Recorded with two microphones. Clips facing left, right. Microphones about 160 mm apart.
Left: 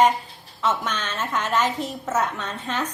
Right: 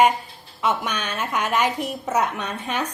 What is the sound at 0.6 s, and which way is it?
A woman's voice, 15° right (ahead or behind).